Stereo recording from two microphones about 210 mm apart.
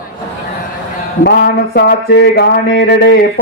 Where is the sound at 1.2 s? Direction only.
50° left (ahead or behind).